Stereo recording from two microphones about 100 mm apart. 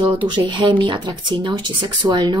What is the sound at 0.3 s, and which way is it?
Speech, 50° right (ahead or behind).